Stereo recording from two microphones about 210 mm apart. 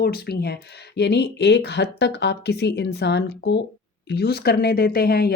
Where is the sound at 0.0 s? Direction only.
50° left (ahead or behind).